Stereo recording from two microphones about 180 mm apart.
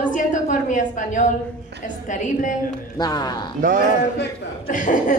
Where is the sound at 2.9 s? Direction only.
20° left (ahead or behind).